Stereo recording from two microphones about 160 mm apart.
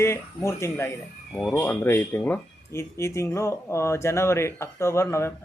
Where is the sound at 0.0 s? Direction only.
15° left (ahead or behind).